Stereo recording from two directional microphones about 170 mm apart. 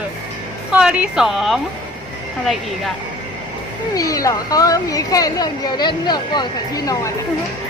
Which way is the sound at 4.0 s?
20° left (ahead or behind).